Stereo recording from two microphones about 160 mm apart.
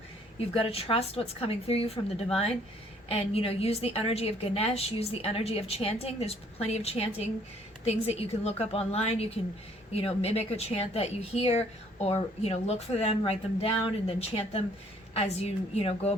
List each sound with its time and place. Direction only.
0.3 s a woman's voice: 35° left (ahead or behind)